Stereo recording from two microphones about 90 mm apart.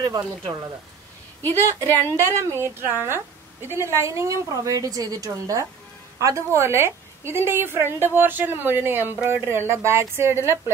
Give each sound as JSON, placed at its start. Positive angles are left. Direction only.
{"t": 1.4, "sound": "a woman's voice", "side_deg": 25}
{"t": 2.5, "sound": "a woman's voice", "side_deg": -25}